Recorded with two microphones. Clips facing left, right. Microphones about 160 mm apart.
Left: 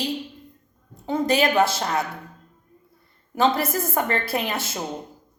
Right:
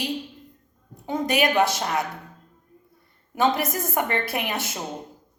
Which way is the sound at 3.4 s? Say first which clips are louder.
Left 2 dB; 15° right (ahead or behind).